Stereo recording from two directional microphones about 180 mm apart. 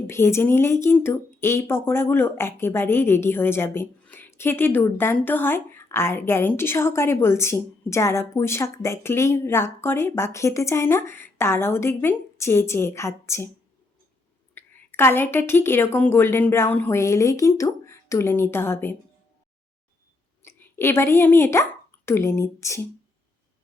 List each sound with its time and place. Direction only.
0.1 s speech: 15° left (ahead or behind)
14.5 s speech: 10° left (ahead or behind)
20.4 s speech: 10° left (ahead or behind)